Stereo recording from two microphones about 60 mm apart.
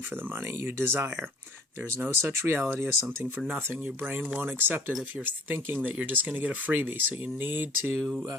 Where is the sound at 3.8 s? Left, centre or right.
Right.